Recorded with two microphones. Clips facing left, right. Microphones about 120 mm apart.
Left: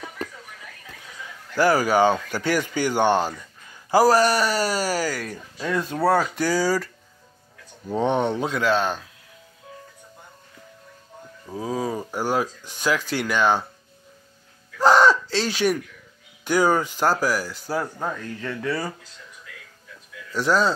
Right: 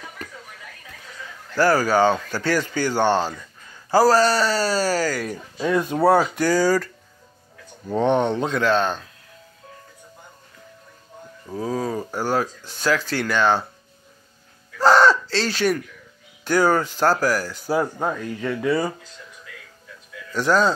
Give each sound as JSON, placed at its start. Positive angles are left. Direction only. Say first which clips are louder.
{"t": 1.5, "sound": "speech", "louder": "right 1 dB", "side_deg": 15}
{"t": 5.2, "sound": "speech", "louder": "right 5 dB", "side_deg": -15}
{"t": 6.3, "sound": "speech", "louder": "right 3 dB", "side_deg": 5}
{"t": 7.9, "sound": "speech", "louder": "right 2 dB", "side_deg": 5}
{"t": 11.5, "sound": "speech", "louder": "right 2 dB", "side_deg": 10}
{"t": 14.8, "sound": "a sound", "louder": "right 1 dB", "side_deg": 15}
{"t": 16.4, "sound": "speech", "louder": "right 1 dB", "side_deg": 15}
{"t": 17.9, "sound": "speech", "louder": "right 4 dB", "side_deg": -20}
{"t": 20.3, "sound": "speech", "louder": "right 2 dB", "side_deg": 0}